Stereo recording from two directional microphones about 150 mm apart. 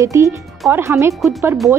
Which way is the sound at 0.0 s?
20° right (ahead or behind).